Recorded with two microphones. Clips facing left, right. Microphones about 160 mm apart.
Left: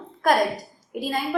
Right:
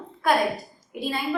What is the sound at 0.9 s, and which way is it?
Speech, 45° left (ahead or behind).